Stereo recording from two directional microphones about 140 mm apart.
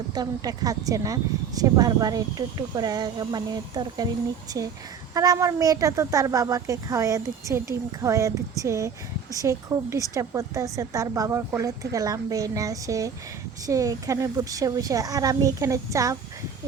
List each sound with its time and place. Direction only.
0.1 s a woman's voice: 25° right (ahead or behind)